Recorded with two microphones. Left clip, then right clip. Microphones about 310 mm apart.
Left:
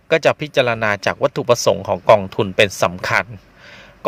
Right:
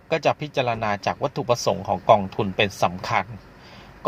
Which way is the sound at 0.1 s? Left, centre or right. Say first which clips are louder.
Left 7 dB; left.